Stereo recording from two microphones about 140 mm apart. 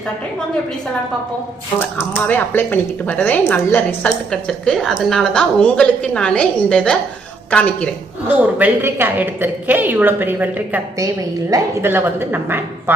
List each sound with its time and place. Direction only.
2.0 s speech: 15° left (ahead or behind)
8.3 s a woman's voice: 10° right (ahead or behind)
11.0 s a woman's voice: 25° right (ahead or behind)